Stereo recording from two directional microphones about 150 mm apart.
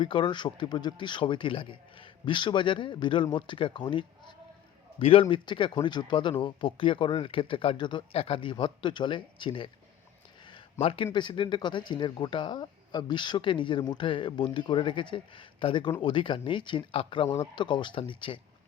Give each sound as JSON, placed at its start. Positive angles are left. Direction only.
{"t": 0.0, "sound": "a man's voice", "side_deg": 30}